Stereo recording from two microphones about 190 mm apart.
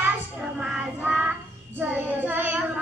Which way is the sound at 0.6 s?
5° right (ahead or behind).